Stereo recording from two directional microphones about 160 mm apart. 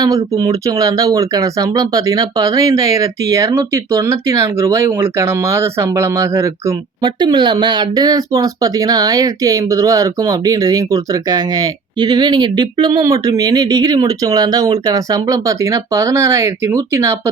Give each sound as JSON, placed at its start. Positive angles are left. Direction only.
{"t": 0.0, "sound": "speech", "side_deg": -20}